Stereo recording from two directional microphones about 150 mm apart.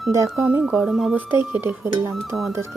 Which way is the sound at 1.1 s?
15° right (ahead or behind).